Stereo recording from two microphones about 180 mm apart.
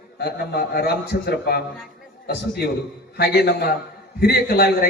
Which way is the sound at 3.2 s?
65° left (ahead or behind).